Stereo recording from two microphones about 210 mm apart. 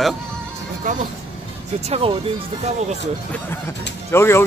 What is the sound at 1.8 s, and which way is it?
Speech, 30° right (ahead or behind).